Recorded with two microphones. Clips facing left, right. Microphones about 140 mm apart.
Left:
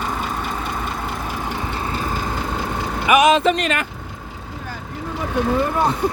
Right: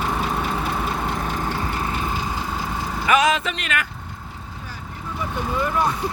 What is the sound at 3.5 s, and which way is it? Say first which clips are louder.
Speech: left 5 dB; 35° left (ahead or behind).